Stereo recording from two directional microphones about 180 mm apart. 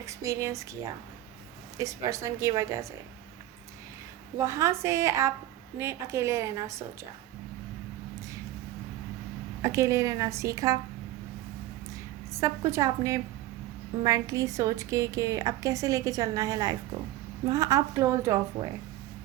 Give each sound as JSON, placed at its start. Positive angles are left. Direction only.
{"t": 0.0, "sound": "a woman's voice", "side_deg": -15}
{"t": 1.8, "sound": "a woman's voice", "side_deg": -15}
{"t": 4.4, "sound": "a woman's voice", "side_deg": -15}
{"t": 9.6, "sound": "a woman's voice", "side_deg": -15}
{"t": 12.7, "sound": "a woman's voice", "side_deg": -15}